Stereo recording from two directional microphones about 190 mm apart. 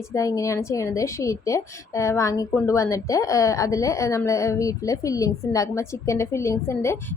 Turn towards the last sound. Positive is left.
turn(degrees=15)  # may be behind; listen again after turning